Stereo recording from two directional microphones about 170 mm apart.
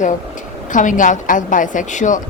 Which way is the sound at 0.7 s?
50° left (ahead or behind).